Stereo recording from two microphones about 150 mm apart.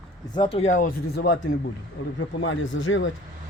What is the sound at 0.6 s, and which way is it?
Speech, 60° left (ahead or behind).